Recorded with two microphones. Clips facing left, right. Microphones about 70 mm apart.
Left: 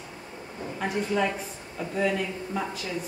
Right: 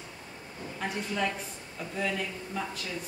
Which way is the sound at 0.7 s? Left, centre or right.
Centre.